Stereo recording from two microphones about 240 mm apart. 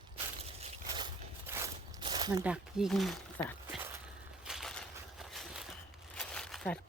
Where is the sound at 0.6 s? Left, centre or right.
Centre.